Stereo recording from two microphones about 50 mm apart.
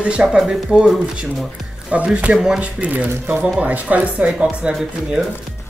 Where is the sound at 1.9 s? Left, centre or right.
Right.